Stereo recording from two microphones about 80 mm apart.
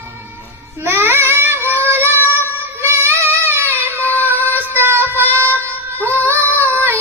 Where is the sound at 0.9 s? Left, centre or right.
Right.